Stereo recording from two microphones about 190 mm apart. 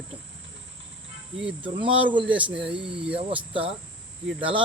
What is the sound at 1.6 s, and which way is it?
Cricket, 25° right (ahead or behind).